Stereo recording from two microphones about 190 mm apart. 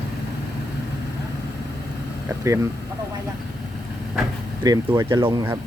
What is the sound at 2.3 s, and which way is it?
Speech, 15° right (ahead or behind).